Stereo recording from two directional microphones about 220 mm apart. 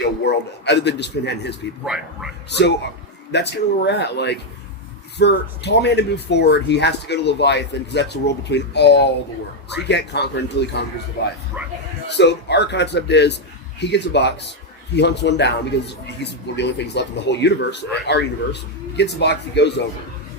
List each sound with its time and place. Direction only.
0.3 s speech: 50° left (ahead or behind)
1.8 s a man's voice: 5° right (ahead or behind)
2.5 s speech: 50° left (ahead or behind)
11.6 s speech: 5° right (ahead or behind)
12.0 s speech: 50° left (ahead or behind)